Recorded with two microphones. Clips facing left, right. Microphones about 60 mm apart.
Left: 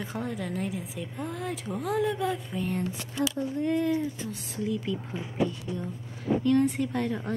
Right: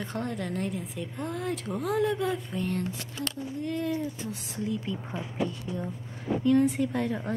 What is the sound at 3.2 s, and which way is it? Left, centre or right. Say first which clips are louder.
Speech: left 7 dB; left.